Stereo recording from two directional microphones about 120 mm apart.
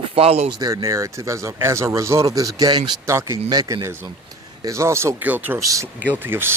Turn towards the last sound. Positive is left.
turn(degrees=-20)  # may be behind; listen again after turning